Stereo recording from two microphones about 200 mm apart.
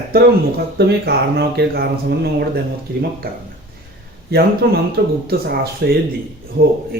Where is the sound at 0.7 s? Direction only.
55° right (ahead or behind).